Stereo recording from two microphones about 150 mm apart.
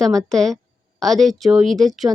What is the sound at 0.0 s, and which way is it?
Speech, 5° left (ahead or behind).